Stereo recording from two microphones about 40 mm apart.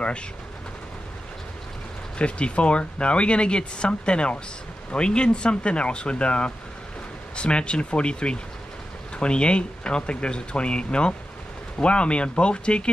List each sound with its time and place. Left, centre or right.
2.1 s speech: left